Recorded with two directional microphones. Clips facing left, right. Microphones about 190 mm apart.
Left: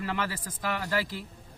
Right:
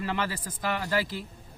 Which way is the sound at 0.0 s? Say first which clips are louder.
Right 1 dB; 25° right (ahead or behind).